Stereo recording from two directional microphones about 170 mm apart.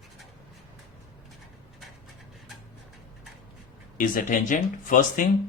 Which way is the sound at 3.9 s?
55° left (ahead or behind).